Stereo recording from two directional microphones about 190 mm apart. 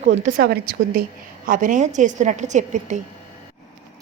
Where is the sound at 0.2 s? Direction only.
50° right (ahead or behind).